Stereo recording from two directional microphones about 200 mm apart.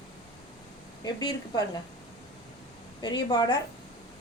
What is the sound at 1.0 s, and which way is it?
Speech, 20° left (ahead or behind).